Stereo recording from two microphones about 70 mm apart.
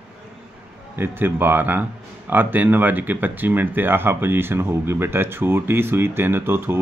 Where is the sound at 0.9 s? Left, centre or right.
Right.